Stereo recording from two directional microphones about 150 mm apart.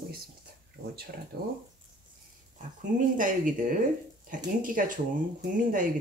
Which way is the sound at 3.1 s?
60° right (ahead or behind).